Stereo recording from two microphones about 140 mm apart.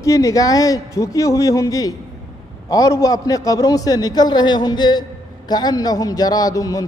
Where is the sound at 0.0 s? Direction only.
25° left (ahead or behind).